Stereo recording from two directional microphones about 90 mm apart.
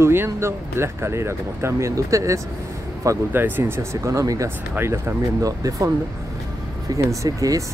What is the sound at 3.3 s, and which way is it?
Speech, 25° right (ahead or behind).